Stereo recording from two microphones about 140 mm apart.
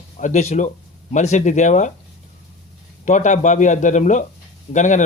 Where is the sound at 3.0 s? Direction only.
60° left (ahead or behind).